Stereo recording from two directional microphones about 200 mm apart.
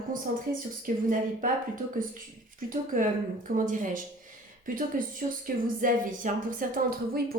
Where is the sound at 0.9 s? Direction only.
40° right (ahead or behind).